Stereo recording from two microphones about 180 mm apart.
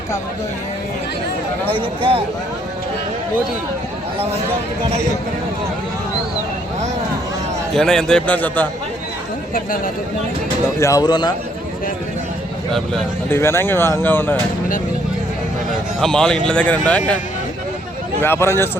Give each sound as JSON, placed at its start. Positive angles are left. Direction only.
{"t": 1.7, "sound": "speech", "side_deg": -30}
{"t": 7.7, "sound": "a man's voice", "side_deg": 5}
{"t": 10.8, "sound": "speech", "side_deg": 15}
{"t": 13.3, "sound": "speech", "side_deg": 15}
{"t": 16.0, "sound": "a man's voice", "side_deg": 5}
{"t": 18.2, "sound": "speech", "side_deg": 15}